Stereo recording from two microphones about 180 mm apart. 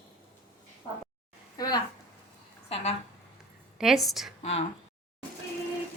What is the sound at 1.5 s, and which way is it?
Speech, 20° left (ahead or behind).